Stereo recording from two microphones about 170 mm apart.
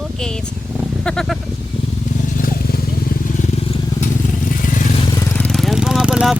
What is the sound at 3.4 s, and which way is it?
Vehicle, 50° left (ahead or behind).